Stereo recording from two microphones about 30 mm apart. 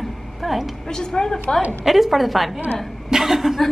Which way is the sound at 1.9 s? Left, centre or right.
Centre.